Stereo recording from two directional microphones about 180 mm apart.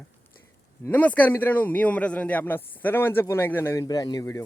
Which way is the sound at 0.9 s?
10° left (ahead or behind).